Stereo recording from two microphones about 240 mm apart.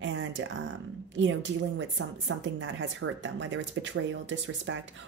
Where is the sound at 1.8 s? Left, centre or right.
Right.